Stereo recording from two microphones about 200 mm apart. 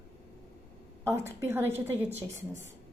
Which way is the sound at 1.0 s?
15° right (ahead or behind).